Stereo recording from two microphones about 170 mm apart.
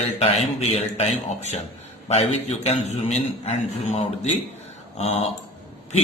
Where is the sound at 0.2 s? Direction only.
35° left (ahead or behind).